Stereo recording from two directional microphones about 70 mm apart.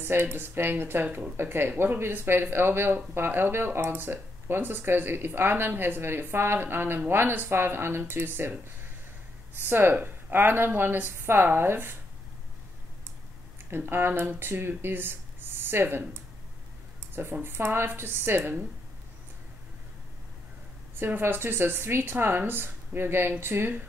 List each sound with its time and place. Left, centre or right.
0.0 s speech: right
13.7 s speech: right
21.0 s speech: right